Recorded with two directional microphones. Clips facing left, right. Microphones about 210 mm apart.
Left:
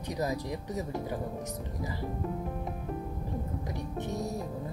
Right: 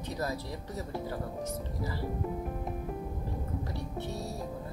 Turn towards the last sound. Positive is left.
turn(degrees=15)  # may be behind; listen again after turning